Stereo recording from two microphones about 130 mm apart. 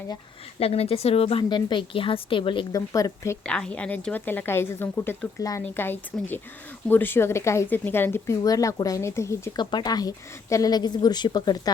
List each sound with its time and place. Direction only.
0.6 s speech: 50° left (ahead or behind)
1.5 s speech: 35° left (ahead or behind)
2.7 s speech: 25° left (ahead or behind)
3.4 s a woman's voice: 10° left (ahead or behind)
9.6 s speech: 35° left (ahead or behind)